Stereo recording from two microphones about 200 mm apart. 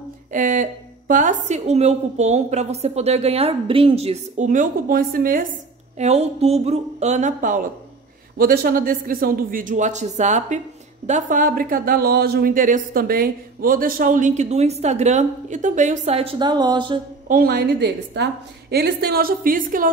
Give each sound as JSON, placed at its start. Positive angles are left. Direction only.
{"t": 0.3, "sound": "speech", "side_deg": -40}
{"t": 5.9, "sound": "a woman's voice", "side_deg": -35}
{"t": 17.3, "sound": "a woman's voice", "side_deg": -50}